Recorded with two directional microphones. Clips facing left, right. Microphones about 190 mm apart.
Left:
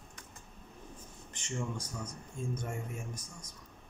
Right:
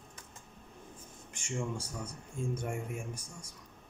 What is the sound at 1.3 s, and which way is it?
Speech, 10° right (ahead or behind).